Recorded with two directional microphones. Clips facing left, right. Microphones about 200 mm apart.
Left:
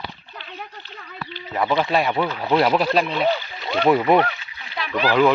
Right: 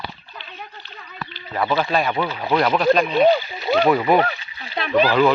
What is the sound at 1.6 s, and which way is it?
Speech, 20° left (ahead or behind).